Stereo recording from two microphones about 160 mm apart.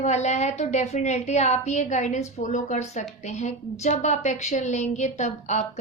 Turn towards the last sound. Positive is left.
turn(degrees=45)  # may be behind; listen again after turning